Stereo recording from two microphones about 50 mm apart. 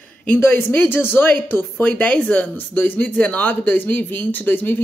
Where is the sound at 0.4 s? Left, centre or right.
Left.